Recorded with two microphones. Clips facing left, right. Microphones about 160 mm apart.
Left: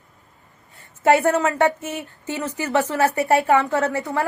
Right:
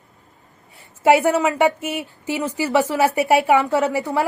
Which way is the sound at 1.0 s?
5° right (ahead or behind).